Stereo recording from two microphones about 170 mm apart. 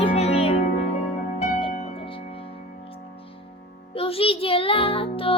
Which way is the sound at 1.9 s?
30° left (ahead or behind).